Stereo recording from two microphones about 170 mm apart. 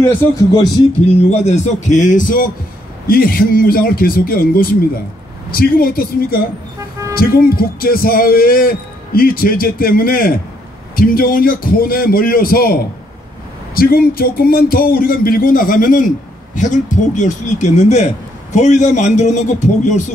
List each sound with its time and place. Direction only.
1.0 s a man's voice: 40° left (ahead or behind); by 12.7 s 60° left (ahead or behind)
13.7 s a man's voice: 60° left (ahead or behind); by 20.0 s 45° left (ahead or behind)